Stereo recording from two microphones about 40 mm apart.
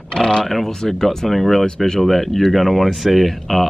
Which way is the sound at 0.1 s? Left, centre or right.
Centre.